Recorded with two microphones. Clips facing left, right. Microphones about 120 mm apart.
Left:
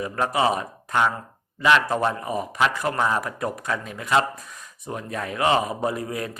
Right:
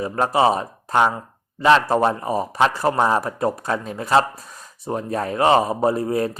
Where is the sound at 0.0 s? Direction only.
30° right (ahead or behind).